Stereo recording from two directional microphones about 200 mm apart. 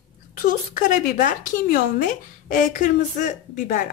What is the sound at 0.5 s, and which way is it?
Speech, 40° left (ahead or behind).